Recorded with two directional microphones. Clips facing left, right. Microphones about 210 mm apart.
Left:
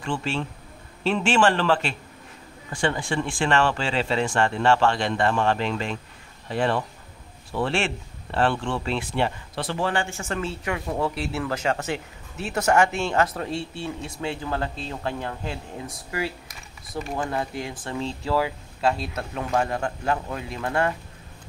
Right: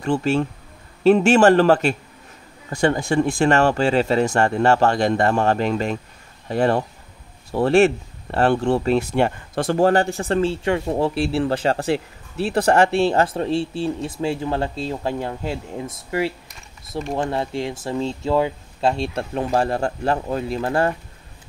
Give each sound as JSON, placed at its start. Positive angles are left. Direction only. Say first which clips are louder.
{"t": 0.0, "sound": "speech", "louder": "right 8 dB", "side_deg": -40}